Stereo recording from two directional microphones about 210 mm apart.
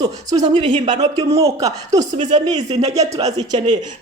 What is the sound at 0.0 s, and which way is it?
Speech, 20° right (ahead or behind).